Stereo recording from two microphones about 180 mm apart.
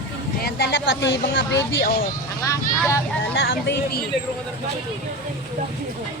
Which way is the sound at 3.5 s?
65° left (ahead or behind).